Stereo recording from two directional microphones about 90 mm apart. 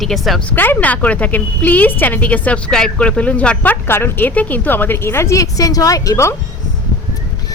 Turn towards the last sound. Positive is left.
turn(degrees=35)  # may be behind; listen again after turning